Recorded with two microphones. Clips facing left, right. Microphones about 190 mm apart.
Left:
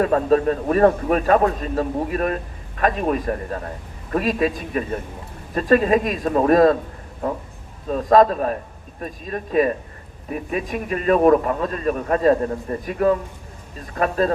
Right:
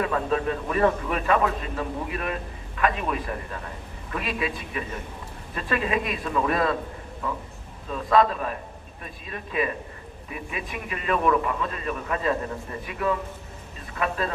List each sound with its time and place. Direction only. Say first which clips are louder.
0.0 s a man's voice: left 8 dB; 40° left (ahead or behind)